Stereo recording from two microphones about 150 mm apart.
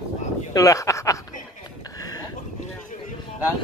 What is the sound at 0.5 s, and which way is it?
Speech, 20° left (ahead or behind).